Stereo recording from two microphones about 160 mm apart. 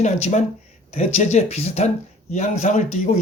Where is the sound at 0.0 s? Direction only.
45° left (ahead or behind).